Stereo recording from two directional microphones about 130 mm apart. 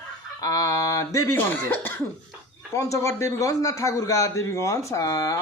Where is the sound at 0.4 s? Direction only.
25° left (ahead or behind).